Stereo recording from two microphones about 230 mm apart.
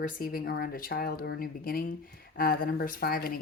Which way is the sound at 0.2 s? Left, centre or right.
Left.